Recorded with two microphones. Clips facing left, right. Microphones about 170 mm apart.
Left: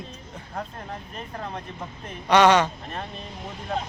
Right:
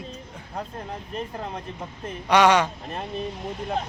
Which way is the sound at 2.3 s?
10° right (ahead or behind).